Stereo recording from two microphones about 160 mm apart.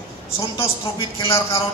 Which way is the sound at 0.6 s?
35° left (ahead or behind).